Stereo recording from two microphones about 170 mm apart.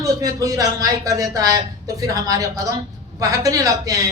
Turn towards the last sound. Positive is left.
turn(degrees=-20)  # may be behind; listen again after turning